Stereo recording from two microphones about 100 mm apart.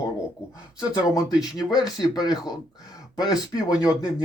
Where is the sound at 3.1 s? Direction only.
40° left (ahead or behind).